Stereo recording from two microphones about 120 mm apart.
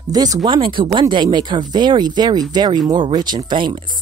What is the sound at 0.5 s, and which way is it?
Speech, 45° right (ahead or behind).